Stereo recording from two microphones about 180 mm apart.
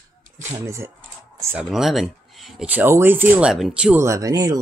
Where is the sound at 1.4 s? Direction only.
10° right (ahead or behind).